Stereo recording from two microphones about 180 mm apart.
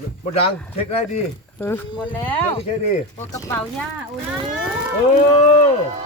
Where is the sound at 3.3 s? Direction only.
20° left (ahead or behind).